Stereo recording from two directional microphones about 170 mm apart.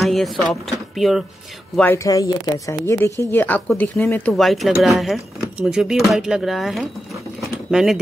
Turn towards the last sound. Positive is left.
turn(degrees=0)  # may be behind; listen again after turning